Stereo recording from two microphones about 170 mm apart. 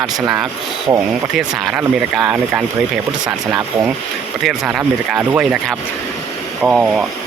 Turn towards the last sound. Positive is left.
turn(degrees=-5)  # may be behind; listen again after turning